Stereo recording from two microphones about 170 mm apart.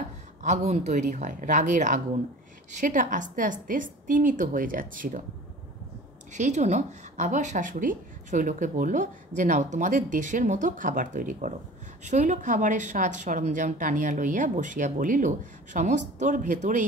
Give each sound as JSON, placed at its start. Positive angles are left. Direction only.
{"t": 0.4, "sound": "speech", "side_deg": -45}
{"t": 6.3, "sound": "speech", "side_deg": -45}